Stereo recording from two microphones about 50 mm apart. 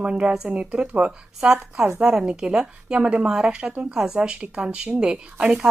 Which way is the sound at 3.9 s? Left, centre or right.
Centre.